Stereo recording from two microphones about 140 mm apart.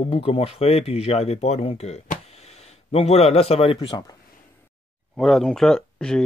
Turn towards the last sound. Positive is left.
turn(degrees=5)  # may be behind; listen again after turning